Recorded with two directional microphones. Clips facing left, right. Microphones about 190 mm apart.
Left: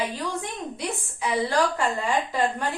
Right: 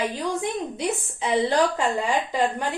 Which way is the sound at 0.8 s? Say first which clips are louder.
Right 4 dB; 20° right (ahead or behind).